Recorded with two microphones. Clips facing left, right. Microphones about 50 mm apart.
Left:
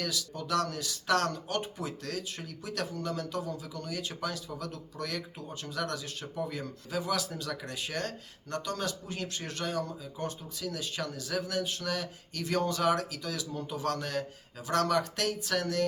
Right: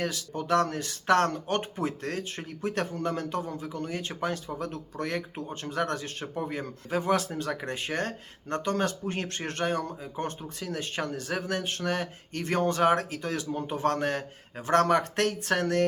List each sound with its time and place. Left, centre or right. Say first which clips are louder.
0.0 s speech: right 4 dB; right